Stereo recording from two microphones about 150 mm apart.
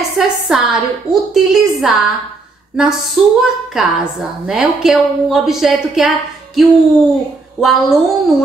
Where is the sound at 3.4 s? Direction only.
5° right (ahead or behind).